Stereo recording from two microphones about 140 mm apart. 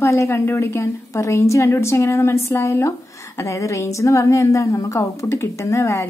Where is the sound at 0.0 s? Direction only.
20° left (ahead or behind).